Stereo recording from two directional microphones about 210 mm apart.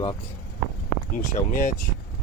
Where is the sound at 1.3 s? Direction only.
40° left (ahead or behind).